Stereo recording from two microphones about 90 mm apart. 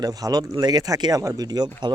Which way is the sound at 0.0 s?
45° right (ahead or behind).